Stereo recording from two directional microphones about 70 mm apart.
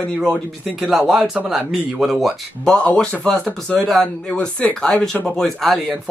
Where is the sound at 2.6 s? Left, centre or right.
Centre.